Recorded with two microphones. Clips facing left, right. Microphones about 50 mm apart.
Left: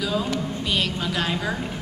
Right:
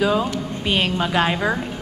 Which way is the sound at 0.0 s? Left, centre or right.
Right.